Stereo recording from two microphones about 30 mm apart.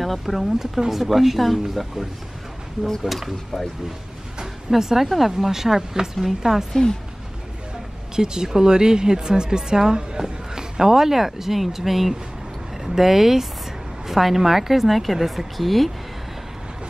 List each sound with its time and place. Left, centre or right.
0.0 s speech: centre
0.6 s a woman's voice: centre
4.6 s a woman's voice: centre
6.7 s a woman's voice: left
8.2 s a woman's voice: right; by 15.9 s centre